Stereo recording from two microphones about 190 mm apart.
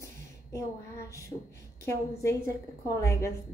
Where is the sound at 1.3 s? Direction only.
30° left (ahead or behind).